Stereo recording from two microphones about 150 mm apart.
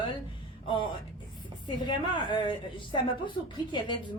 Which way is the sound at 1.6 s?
30° left (ahead or behind).